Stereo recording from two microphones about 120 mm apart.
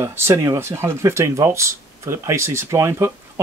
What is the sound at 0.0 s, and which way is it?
Speech, 20° right (ahead or behind).